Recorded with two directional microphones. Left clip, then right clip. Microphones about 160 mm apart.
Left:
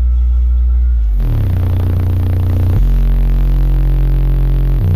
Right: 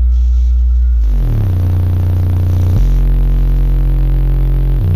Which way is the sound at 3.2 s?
80° left.